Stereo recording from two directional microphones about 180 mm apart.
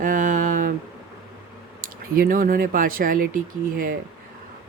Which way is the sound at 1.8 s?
50° right (ahead or behind).